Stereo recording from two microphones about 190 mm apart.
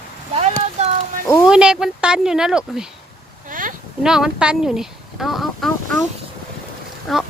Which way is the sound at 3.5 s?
45° right (ahead or behind).